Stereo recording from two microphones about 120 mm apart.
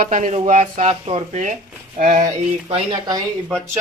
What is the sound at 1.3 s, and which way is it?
Speech, 75° right (ahead or behind).